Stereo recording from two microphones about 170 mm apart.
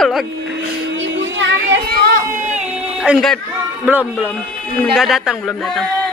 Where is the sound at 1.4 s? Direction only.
75° right (ahead or behind); by 2.2 s 60° right (ahead or behind).